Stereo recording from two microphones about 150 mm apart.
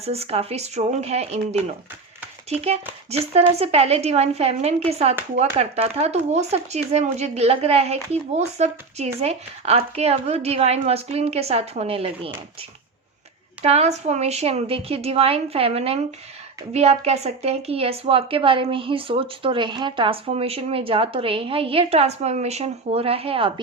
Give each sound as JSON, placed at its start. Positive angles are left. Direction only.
{"t": 0.0, "sound": "speech", "side_deg": -45}
{"t": 3.1, "sound": "speech", "side_deg": -45}
{"t": 13.6, "sound": "a woman's voice", "side_deg": -45}